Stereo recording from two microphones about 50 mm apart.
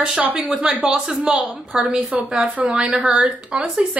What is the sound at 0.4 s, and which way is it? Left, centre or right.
Speech, centre.